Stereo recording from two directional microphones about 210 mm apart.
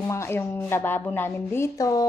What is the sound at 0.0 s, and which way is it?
Speech, 15° left (ahead or behind).